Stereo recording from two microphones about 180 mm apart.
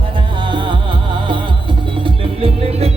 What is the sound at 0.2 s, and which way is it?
Music, 25° right (ahead or behind).